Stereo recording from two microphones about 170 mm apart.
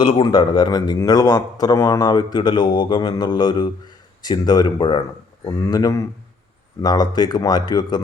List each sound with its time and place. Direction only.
0.0 s speech: 30° left (ahead or behind)